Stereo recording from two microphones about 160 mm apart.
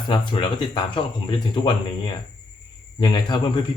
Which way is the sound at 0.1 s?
30° left (ahead or behind).